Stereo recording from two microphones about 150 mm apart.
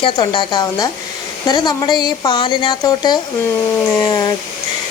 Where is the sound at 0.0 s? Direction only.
30° left (ahead or behind).